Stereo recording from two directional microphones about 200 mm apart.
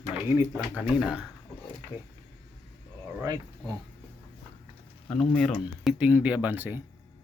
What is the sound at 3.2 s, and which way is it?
Speech, 15° right (ahead or behind).